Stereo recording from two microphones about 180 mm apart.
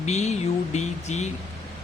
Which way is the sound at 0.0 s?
40° left (ahead or behind).